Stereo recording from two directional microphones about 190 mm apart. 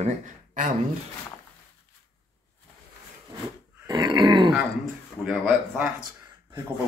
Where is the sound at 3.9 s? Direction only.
20° right (ahead or behind).